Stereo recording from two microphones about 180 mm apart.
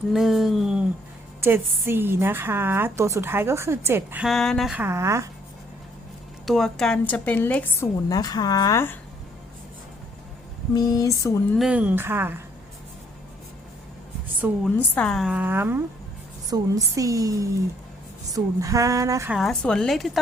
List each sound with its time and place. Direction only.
0.1 s a woman's voice: centre (ahead or behind)
1.4 s a woman's voice: 15° right (ahead or behind)
4.8 s a woman's voice: 15° right (ahead or behind)
6.4 s a woman's voice: centre (ahead or behind)
10.8 s a woman's voice: 20° left (ahead or behind)
11.5 s a woman's voice: 5° right (ahead or behind)
14.6 s a woman's voice: 5° left (ahead or behind); by 19.3 s 15° right (ahead or behind)
19.3 s a woman's voice: centre (ahead or behind)